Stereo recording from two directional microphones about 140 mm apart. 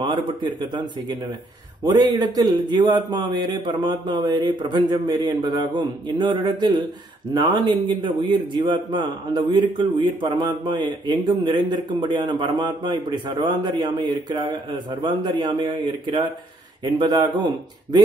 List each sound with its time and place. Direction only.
0.0 s speech: 35° right (ahead or behind)